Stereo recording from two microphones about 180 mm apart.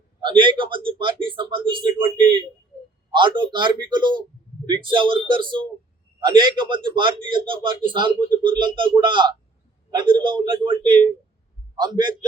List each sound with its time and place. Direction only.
0.2 s a man's voice: 25° right (ahead or behind)
3.1 s a man's voice: 25° right (ahead or behind)